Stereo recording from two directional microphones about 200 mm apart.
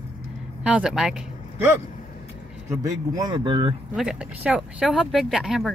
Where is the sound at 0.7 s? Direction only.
5° right (ahead or behind).